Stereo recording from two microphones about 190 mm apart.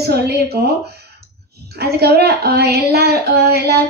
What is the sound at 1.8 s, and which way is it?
Child singing, 55° right (ahead or behind).